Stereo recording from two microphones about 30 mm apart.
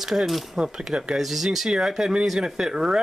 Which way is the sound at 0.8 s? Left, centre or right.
Right.